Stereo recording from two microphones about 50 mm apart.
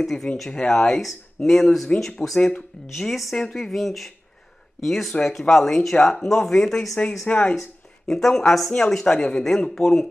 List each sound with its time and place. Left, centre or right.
0.0 s speech: centre
7.3 s speech: left
8.1 s speech: centre